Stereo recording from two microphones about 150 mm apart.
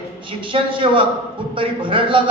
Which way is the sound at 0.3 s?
35° right (ahead or behind).